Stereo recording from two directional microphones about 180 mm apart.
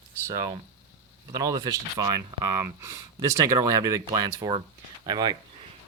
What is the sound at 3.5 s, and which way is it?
Speech, 20° right (ahead or behind).